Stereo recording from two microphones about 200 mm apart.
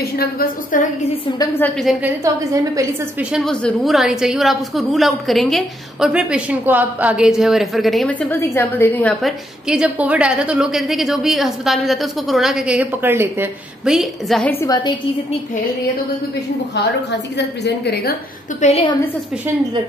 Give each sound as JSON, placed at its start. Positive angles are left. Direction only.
{"t": 0.0, "sound": "a woman's voice", "side_deg": 50}
{"t": 1.9, "sound": "a woman's voice", "side_deg": 0}
{"t": 2.2, "sound": "a woman's voice", "side_deg": -15}
{"t": 3.3, "sound": "a woman's voice", "side_deg": 0}
{"t": 9.7, "sound": "a woman's voice", "side_deg": -5}
{"t": 16.7, "sound": "a woman's voice", "side_deg": 60}
{"t": 18.6, "sound": "a woman's voice", "side_deg": 30}